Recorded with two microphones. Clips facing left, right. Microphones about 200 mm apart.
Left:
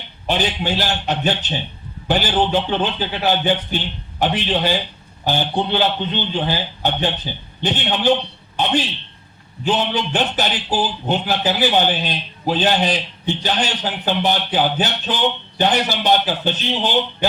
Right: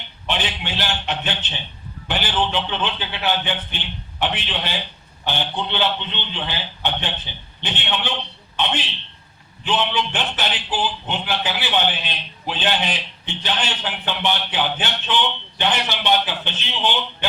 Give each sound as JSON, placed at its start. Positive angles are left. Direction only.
{"t": 0.3, "sound": "a man's voice", "side_deg": 40}
{"t": 9.6, "sound": "a man's voice", "side_deg": 40}